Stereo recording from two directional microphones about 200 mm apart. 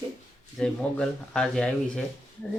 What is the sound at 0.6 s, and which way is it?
Speech, 5° left (ahead or behind).